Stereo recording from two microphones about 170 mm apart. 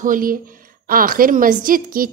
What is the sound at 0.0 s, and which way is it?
A woman's voice, 55° right (ahead or behind).